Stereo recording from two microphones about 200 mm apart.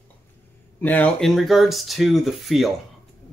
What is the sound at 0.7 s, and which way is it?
Speech, 10° left (ahead or behind).